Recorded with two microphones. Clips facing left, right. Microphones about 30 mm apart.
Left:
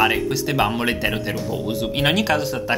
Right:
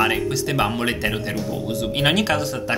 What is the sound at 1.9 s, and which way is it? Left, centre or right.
Speech, centre.